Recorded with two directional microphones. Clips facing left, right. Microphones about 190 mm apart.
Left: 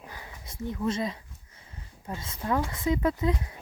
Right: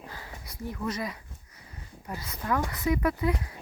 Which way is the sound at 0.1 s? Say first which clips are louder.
Right 1 dB; 20° left (ahead or behind).